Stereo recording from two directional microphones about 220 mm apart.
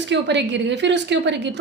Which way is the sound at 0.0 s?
50° right (ahead or behind).